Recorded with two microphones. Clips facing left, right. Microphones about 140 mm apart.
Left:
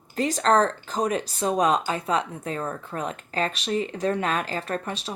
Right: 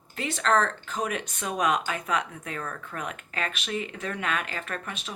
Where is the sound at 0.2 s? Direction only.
40° left (ahead or behind).